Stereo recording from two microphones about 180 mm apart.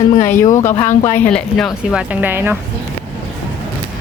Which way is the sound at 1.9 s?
10° right (ahead or behind).